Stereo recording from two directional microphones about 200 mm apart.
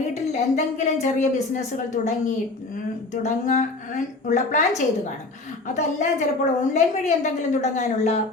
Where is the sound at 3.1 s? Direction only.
35° left (ahead or behind).